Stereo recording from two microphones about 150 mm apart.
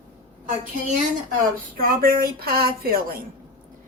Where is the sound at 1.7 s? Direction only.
75° right (ahead or behind).